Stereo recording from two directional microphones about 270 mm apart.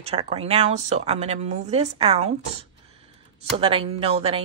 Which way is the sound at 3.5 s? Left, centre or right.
Right.